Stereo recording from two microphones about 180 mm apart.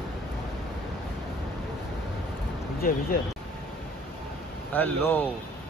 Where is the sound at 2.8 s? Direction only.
55° left (ahead or behind).